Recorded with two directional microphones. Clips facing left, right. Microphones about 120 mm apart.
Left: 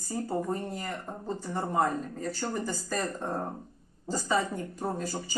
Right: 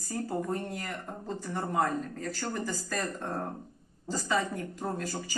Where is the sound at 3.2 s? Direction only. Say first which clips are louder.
Left 2 dB; 15° left (ahead or behind).